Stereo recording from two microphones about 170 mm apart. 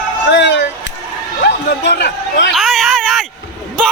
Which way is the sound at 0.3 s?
90° left.